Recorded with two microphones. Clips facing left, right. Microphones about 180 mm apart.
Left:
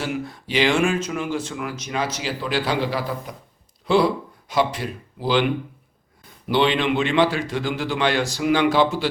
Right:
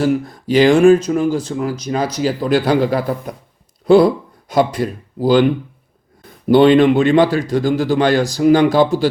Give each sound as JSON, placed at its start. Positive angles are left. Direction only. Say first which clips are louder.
{"t": 0.0, "sound": "speech", "louder": "right 10 dB", "side_deg": -40}
{"t": 6.5, "sound": "speech", "louder": "right 10 dB", "side_deg": -45}